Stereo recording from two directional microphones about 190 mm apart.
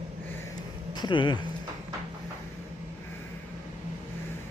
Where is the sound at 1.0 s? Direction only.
25° left (ahead or behind).